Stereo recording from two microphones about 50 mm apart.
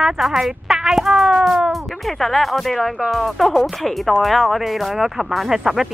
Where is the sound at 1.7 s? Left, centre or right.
Centre.